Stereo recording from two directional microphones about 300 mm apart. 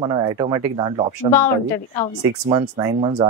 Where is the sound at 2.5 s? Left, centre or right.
Centre.